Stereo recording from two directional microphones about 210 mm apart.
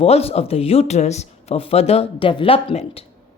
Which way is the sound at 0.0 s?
30° left (ahead or behind).